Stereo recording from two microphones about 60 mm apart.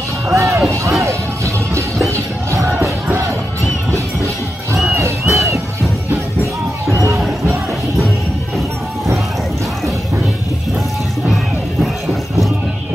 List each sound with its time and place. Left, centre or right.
0.3 s music: right
4.9 s music: right
6.9 s a sound: right